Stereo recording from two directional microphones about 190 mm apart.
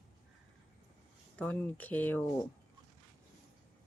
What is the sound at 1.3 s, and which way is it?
Speech, 5° left (ahead or behind).